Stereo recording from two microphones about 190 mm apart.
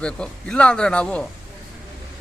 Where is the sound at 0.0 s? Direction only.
5° left (ahead or behind).